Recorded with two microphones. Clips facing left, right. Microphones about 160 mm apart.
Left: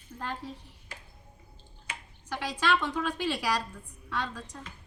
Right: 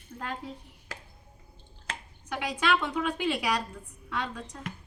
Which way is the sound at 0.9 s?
90° right.